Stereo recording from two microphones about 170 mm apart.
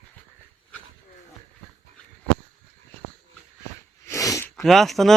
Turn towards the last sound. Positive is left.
turn(degrees=0)  # may be behind; listen again after turning